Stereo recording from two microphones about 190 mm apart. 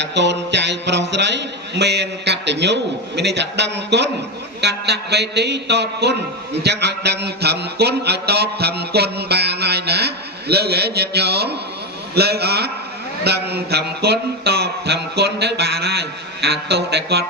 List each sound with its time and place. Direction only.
0.0 s a man's voice: 65° right (ahead or behind)